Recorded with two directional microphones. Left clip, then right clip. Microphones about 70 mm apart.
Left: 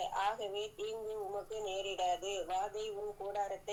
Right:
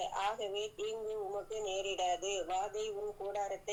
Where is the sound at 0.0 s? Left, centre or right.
Right.